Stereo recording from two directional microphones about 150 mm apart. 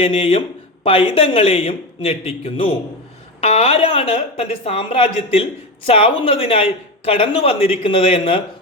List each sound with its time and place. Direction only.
0.0 s a woman's voice: 40° left (ahead or behind)